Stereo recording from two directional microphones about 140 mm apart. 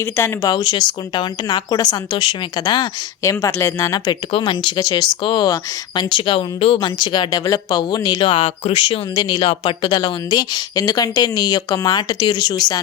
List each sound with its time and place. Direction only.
0.0 s speech: 15° left (ahead or behind)
0.5 s a woman's voice: 35° left (ahead or behind)